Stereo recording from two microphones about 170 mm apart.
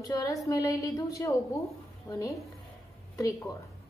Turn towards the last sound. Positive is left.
turn(degrees=20)  # may be behind; listen again after turning